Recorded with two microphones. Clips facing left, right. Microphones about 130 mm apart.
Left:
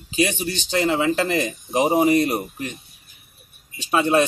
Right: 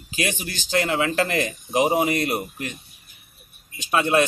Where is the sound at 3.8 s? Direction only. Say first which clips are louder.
Left 2 dB; 30° left (ahead or behind).